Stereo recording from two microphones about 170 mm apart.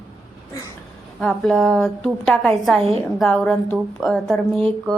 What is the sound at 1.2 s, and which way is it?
A woman's voice, 5° left (ahead or behind).